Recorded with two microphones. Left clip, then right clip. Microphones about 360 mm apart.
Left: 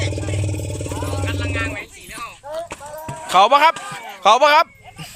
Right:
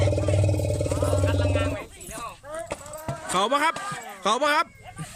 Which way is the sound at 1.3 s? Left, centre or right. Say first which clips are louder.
Left 2 dB; right.